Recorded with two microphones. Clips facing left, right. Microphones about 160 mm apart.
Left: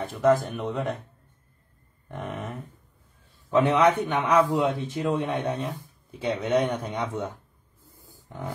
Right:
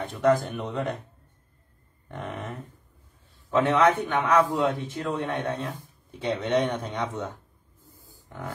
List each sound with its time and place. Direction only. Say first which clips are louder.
0.0 s speech: left 1 dB; centre (ahead or behind)
2.0 s speech: left 1 dB; 5° left (ahead or behind)
3.4 s a man's voice: left 1 dB; 20° left (ahead or behind)
8.1 s a sound: left 2 dB; 20° left (ahead or behind)